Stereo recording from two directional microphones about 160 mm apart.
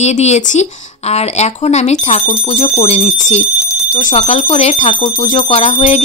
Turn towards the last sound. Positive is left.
turn(degrees=40)  # may be behind; listen again after turning